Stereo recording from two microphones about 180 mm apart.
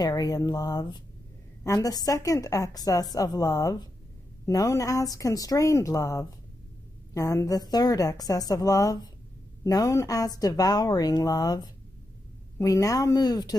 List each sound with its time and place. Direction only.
0.0 s a woman's voice: 20° left (ahead or behind)